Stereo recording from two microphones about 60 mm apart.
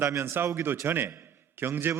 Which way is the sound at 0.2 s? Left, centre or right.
Right.